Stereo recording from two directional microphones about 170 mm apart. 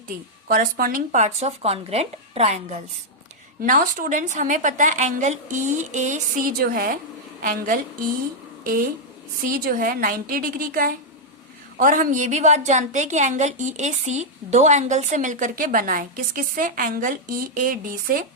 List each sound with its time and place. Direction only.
0.1 s a woman's voice: 60° right (ahead or behind); by 2.7 s 40° right (ahead or behind)
3.6 s a woman's voice: 55° right (ahead or behind)